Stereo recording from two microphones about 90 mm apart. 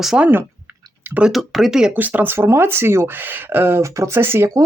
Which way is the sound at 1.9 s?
20° right (ahead or behind).